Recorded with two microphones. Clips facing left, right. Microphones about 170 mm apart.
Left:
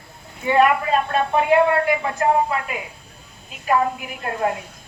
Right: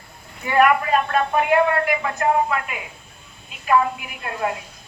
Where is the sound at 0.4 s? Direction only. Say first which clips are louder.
Even; 25° left (ahead or behind).